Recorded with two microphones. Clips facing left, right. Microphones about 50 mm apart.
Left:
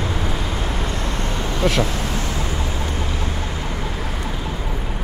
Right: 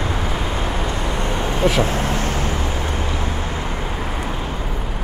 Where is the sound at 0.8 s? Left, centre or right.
Right.